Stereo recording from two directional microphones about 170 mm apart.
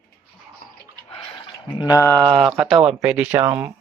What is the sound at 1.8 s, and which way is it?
Speech, 20° left (ahead or behind).